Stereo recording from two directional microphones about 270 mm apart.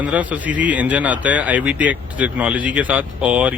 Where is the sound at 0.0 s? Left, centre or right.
Centre.